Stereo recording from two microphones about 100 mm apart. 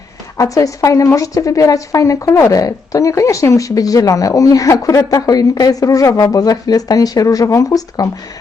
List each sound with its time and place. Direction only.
0.3 s a woman's voice: 35° left (ahead or behind)